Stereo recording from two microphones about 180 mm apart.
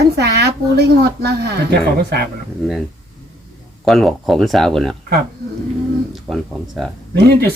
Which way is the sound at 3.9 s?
Centre (ahead or behind).